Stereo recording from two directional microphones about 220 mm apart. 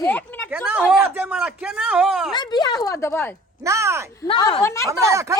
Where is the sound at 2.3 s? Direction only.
20° left (ahead or behind).